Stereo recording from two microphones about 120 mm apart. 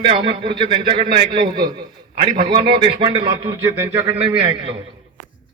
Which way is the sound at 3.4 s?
25° right (ahead or behind).